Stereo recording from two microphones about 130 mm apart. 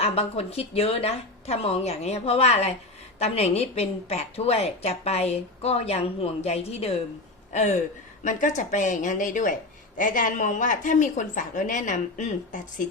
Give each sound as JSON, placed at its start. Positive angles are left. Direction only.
{"t": 0.0, "sound": "a woman's voice", "side_deg": 50}
{"t": 7.5, "sound": "speech", "side_deg": 65}
{"t": 8.2, "sound": "a woman's voice", "side_deg": 75}